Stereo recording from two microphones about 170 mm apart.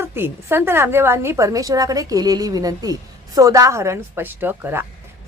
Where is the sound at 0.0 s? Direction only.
15° right (ahead or behind).